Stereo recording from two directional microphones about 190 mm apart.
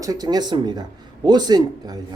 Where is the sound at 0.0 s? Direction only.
20° right (ahead or behind).